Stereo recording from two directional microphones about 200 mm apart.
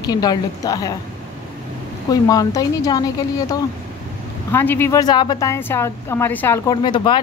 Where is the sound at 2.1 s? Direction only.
20° left (ahead or behind).